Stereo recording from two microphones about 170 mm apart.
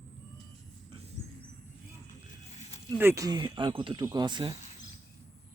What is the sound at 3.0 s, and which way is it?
Speech, 15° right (ahead or behind).